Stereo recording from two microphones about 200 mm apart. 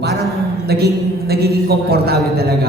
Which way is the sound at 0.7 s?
50° right (ahead or behind).